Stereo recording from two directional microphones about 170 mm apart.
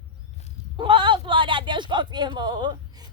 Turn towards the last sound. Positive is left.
turn(degrees=-25)  # may be behind; listen again after turning